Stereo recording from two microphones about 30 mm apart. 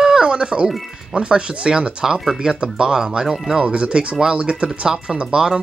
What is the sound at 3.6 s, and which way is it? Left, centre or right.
Speech, right.